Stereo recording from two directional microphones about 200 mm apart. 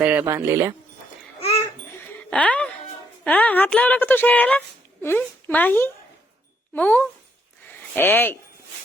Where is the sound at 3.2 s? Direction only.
10° left (ahead or behind).